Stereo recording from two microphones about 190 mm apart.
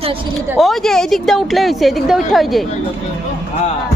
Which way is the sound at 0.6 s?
Centre (ahead or behind).